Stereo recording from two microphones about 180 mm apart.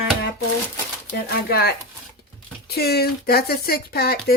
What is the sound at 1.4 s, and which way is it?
Speech, 60° left (ahead or behind).